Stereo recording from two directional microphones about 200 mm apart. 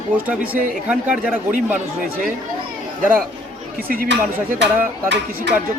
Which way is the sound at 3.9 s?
45° right (ahead or behind).